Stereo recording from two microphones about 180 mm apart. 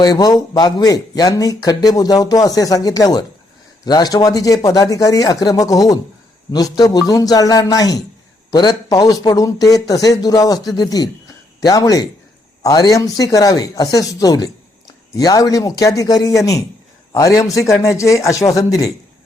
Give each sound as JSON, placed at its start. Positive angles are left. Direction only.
{"t": 0.0, "sound": "a man's voice", "side_deg": 20}